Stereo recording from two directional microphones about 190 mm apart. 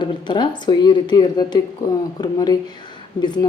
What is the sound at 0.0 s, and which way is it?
A woman's voice, 25° left (ahead or behind).